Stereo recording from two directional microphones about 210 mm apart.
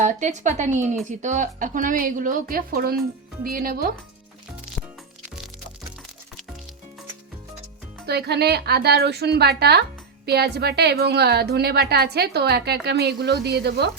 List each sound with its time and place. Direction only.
0.0 s a woman's voice: 35° right (ahead or behind)
8.0 s a woman's voice: 50° right (ahead or behind)